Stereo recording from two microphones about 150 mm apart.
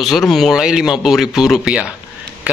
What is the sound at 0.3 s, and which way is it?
Speech, centre (ahead or behind).